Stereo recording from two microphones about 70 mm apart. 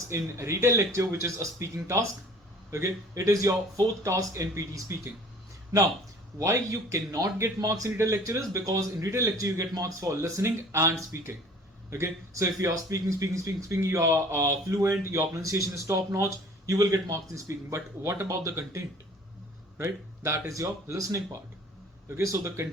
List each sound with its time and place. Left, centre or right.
0.1 s speech: right
6.4 s speech: right
16.7 s speech: right
19.8 s speech: right
22.2 s speech: right